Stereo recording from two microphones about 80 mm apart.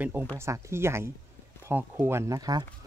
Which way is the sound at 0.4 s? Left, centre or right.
Right.